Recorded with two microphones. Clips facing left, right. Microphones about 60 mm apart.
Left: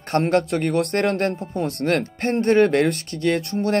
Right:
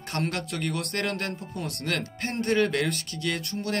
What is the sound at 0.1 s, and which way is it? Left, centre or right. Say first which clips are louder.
Speech: left 11 dB; left.